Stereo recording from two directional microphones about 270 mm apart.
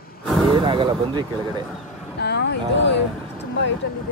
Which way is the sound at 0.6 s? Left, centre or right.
Centre.